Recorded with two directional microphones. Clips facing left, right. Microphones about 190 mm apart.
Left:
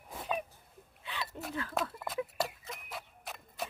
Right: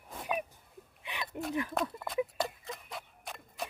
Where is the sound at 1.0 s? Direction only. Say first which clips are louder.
Right 1 dB; 15° right (ahead or behind).